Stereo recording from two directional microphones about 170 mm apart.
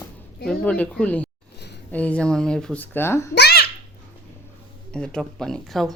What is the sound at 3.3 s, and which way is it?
Babbling, 75° left (ahead or behind).